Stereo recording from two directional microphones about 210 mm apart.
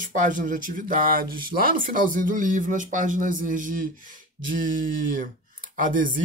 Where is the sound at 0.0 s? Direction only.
40° right (ahead or behind).